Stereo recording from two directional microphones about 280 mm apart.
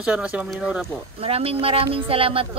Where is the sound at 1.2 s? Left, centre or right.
Centre.